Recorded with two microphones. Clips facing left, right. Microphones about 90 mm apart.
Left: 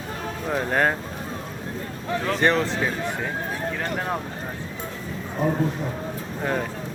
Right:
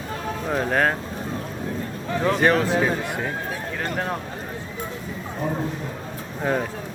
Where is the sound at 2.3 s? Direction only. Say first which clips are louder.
Right 2 dB; 5° right (ahead or behind).